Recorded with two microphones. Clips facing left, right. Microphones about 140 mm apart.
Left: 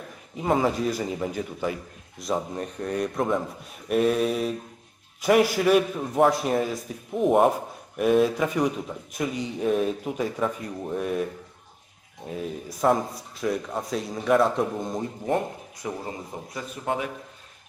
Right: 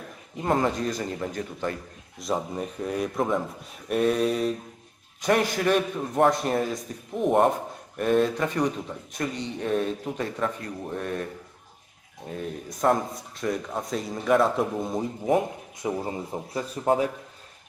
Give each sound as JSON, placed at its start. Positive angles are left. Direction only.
{"t": 0.3, "sound": "a man's voice", "side_deg": 0}
{"t": 12.3, "sound": "a man's voice", "side_deg": 5}
{"t": 15.8, "sound": "speech", "side_deg": -30}